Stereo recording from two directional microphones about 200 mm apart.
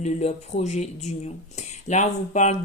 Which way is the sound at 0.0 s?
35° left (ahead or behind).